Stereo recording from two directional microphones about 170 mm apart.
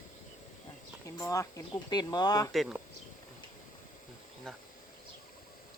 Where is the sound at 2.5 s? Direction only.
Centre (ahead or behind).